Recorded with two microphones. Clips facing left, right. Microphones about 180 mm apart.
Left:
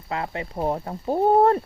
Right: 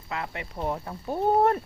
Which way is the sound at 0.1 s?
30° left (ahead or behind).